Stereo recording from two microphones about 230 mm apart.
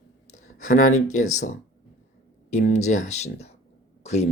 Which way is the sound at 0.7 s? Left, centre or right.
Left.